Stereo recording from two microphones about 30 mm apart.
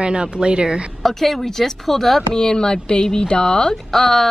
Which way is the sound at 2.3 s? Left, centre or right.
Left.